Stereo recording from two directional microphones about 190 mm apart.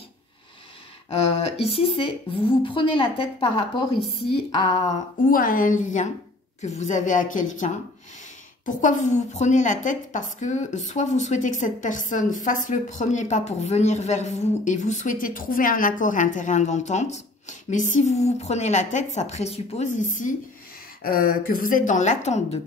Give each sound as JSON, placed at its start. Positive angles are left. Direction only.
{"t": 1.3, "sound": "a woman's voice", "side_deg": 30}
{"t": 5.3, "sound": "a woman's voice", "side_deg": 45}